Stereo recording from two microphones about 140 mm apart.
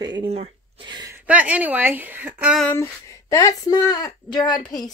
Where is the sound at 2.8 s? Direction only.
20° left (ahead or behind).